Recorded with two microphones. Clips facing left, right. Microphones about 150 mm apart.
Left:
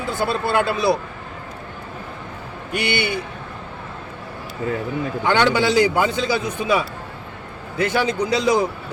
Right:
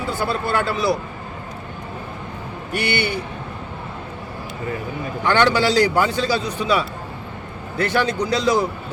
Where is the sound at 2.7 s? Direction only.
15° left (ahead or behind).